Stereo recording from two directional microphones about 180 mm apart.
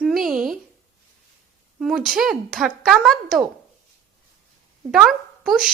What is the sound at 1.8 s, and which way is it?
A woman's voice, centre (ahead or behind).